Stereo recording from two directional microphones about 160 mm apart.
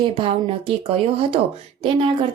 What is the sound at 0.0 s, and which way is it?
Speech, 30° right (ahead or behind).